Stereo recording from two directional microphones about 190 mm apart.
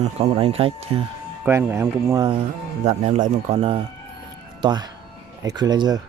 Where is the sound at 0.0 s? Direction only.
30° right (ahead or behind).